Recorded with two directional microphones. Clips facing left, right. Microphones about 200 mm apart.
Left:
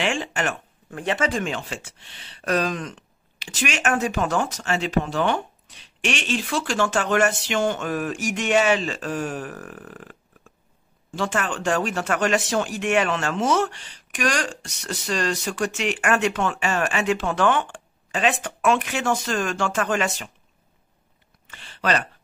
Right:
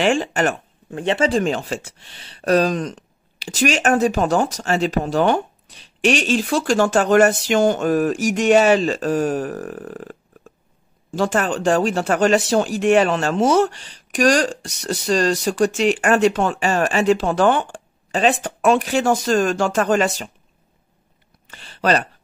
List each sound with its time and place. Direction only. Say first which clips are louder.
0.0 s speech: right 7 dB; 40° right (ahead or behind)
0.8 s speech: right 5 dB; 25° right (ahead or behind)
11.1 s speech: right 6 dB; 40° right (ahead or behind)
21.5 s a sound: right 5 dB; 35° right (ahead or behind)